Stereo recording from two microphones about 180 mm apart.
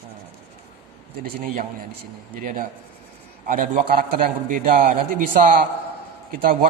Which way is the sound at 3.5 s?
50° right (ahead or behind).